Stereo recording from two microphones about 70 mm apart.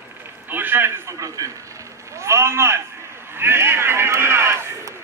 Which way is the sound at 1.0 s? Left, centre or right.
Right.